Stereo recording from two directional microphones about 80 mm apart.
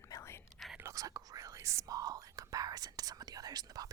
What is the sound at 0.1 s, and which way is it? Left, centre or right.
Whispering, left.